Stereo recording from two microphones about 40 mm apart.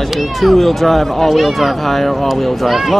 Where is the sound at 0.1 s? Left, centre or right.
Centre.